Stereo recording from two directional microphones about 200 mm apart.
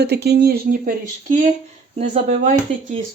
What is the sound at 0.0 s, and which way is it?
Speech, 55° right (ahead or behind).